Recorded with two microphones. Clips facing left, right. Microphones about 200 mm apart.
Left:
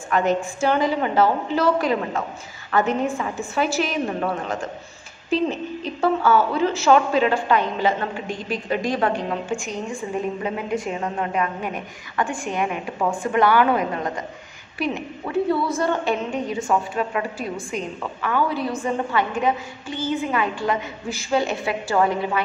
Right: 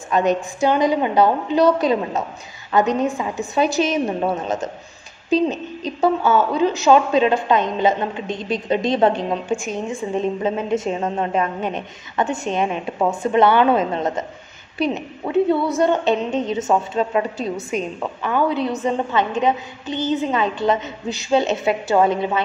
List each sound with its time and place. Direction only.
0.1 s a woman's voice: 20° right (ahead or behind)